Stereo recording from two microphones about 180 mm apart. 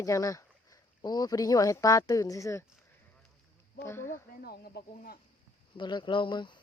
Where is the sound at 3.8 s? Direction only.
15° left (ahead or behind).